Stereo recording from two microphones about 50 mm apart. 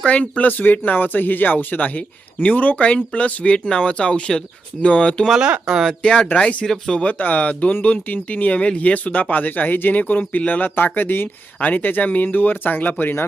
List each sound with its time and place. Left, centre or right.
0.0 s speech: left
6.7 s speech: centre
7.0 s speech: left